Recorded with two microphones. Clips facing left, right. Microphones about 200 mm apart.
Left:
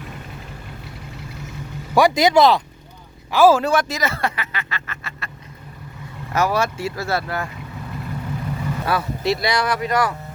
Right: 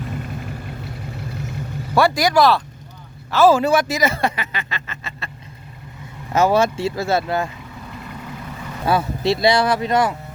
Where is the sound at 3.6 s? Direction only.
5° right (ahead or behind); by 5.3 s 20° right (ahead or behind).